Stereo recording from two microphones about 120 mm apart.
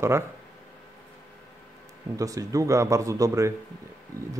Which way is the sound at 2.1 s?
30° right (ahead or behind).